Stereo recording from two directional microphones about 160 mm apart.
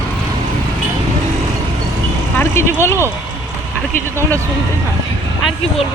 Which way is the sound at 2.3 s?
15° left (ahead or behind).